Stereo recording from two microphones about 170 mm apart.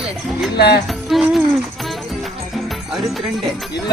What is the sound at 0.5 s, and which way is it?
Speech, 70° left (ahead or behind).